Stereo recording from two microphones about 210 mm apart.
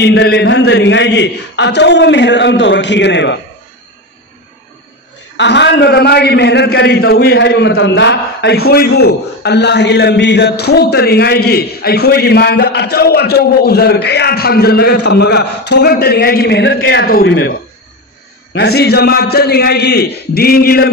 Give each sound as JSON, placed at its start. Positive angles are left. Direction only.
{"t": 0.0, "sound": "a man's voice", "side_deg": 50}
{"t": 5.4, "sound": "a man's voice", "side_deg": 55}